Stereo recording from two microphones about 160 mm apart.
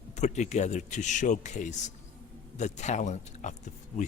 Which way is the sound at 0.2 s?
45° left (ahead or behind).